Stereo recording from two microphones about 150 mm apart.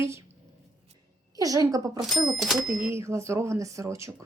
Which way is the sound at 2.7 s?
20° right (ahead or behind).